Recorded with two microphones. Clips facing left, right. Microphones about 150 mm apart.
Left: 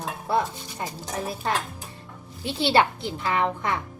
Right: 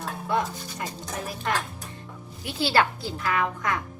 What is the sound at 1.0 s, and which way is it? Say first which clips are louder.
A child's voice: left 4 dB; 25° left (ahead or behind).